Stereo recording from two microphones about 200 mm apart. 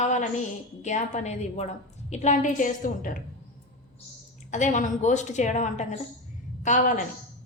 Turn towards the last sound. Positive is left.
turn(degrees=40)  # may be behind; listen again after turning